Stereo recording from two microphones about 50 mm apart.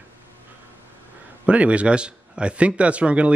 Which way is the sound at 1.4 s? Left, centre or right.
Right.